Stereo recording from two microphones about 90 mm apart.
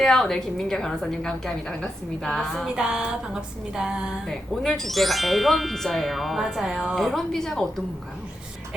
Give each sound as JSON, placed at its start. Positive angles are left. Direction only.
{"t": 0.0, "sound": "speech", "side_deg": 5}
{"t": 3.8, "sound": "a sound", "side_deg": -10}
{"t": 4.3, "sound": "speech", "side_deg": 5}